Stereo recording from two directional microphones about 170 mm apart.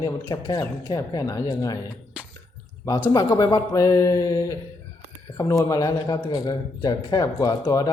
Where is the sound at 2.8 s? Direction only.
20° left (ahead or behind).